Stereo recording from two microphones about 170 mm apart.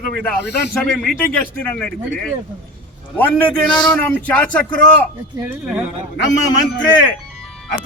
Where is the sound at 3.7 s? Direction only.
25° left (ahead or behind).